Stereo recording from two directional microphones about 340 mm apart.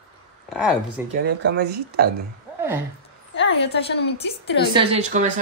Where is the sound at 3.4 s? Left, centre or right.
Left.